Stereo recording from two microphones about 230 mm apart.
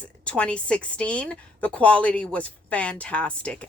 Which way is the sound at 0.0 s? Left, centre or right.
Centre.